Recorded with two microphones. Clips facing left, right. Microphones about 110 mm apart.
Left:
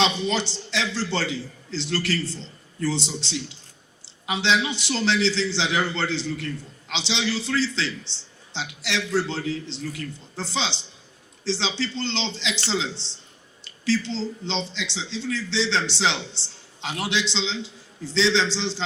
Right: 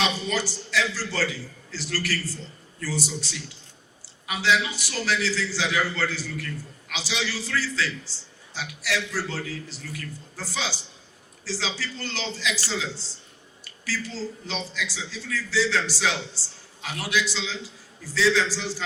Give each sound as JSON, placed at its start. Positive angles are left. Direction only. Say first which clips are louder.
{"t": 0.0, "sound": "a man's voice", "louder": "left 3 dB", "side_deg": 25}